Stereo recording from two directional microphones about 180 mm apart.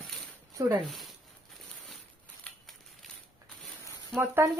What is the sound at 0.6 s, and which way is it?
Speech, 20° right (ahead or behind).